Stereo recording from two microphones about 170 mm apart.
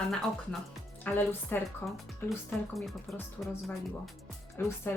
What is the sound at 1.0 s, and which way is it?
Speech, 10° left (ahead or behind).